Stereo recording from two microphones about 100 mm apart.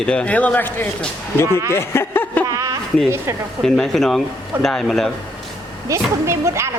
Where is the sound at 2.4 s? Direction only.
30° right (ahead or behind).